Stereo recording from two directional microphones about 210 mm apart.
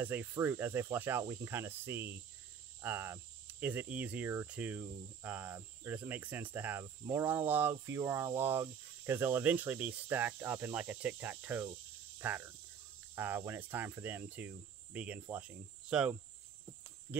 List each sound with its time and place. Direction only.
0.0 s speech: 10° right (ahead or behind)
13.1 s cricket: 10° right (ahead or behind)
13.5 s speech: 10° right (ahead or behind)